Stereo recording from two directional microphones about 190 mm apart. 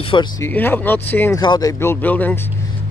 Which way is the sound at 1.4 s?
20° left (ahead or behind).